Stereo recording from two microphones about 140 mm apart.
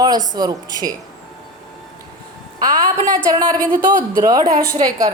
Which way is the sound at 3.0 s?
30° right (ahead or behind).